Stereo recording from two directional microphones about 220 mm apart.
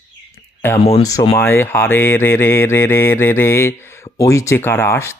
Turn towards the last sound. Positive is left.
turn(degrees=10)  # may be behind; listen again after turning